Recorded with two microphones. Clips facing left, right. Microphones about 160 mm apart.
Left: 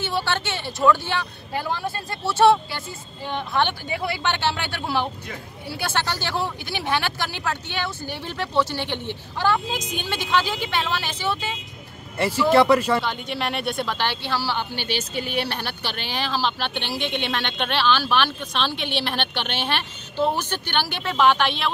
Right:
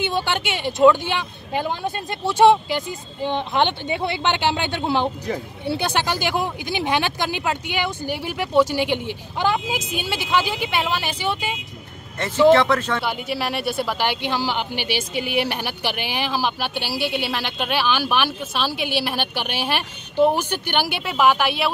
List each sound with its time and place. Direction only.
0.0 s speech: 15° right (ahead or behind)
12.2 s speech: 10° left (ahead or behind)
13.0 s speech: 5° right (ahead or behind)